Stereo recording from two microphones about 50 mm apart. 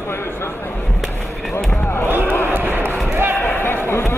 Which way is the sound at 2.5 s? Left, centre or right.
Right.